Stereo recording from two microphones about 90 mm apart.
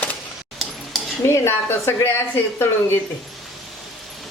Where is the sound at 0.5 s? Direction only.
Centre (ahead or behind).